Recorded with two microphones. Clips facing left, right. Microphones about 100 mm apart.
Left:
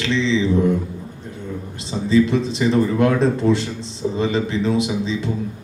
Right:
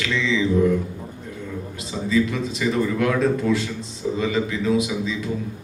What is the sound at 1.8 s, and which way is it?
A man's voice, 30° left (ahead or behind).